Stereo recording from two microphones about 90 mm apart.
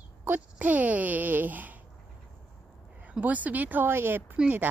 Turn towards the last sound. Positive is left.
turn(degrees=-15)  # may be behind; listen again after turning